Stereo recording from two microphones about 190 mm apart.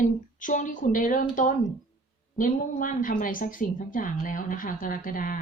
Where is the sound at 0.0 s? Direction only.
45° left (ahead or behind).